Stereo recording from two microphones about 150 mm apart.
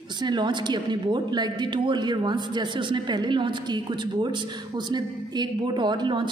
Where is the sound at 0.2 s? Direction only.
30° right (ahead or behind).